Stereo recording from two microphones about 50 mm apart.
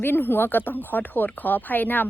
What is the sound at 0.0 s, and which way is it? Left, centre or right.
A woman's voice, left.